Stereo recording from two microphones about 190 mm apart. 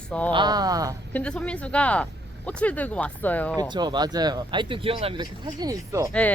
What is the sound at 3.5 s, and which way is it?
Speech, 25° right (ahead or behind).